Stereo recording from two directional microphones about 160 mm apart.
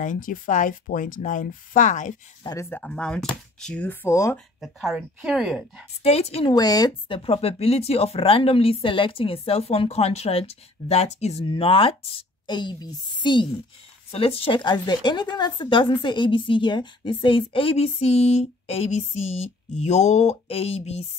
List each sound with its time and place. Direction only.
0.0 s speech: 55° left (ahead or behind)
2.4 s speech: 20° left (ahead or behind)
4.6 s speech: centre (ahead or behind)
6.0 s a woman's voice: 40° left (ahead or behind)
6.5 s a woman's voice: 25° left (ahead or behind); by 21.0 s 40° left (ahead or behind)